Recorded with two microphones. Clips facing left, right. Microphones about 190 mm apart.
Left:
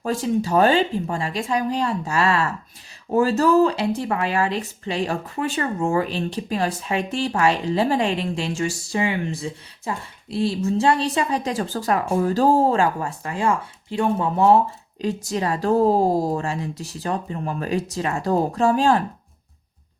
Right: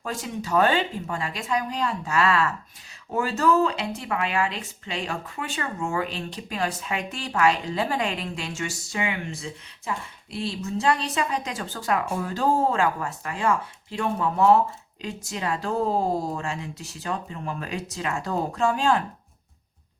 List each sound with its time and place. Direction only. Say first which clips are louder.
0.0 s speech: left 9 dB; 30° left (ahead or behind)